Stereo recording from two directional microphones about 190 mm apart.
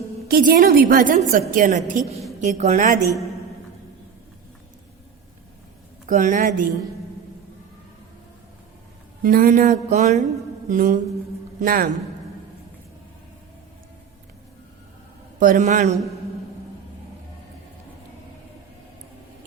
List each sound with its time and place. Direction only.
0.3 s a woman's voice: 50° right (ahead or behind)
6.1 s a woman's voice: 45° right (ahead or behind)
9.2 s a woman's voice: 50° right (ahead or behind)
15.4 s a woman's voice: 45° right (ahead or behind)